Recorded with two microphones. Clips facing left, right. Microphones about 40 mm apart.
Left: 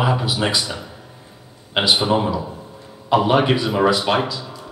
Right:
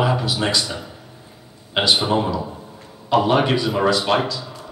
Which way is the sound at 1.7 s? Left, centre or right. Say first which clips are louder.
Left 1 dB; centre.